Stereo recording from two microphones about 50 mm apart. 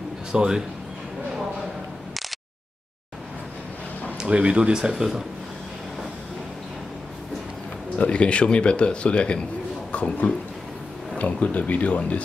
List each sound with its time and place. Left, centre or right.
0.3 s speech: centre
4.2 s speech: right
8.0 s speech: left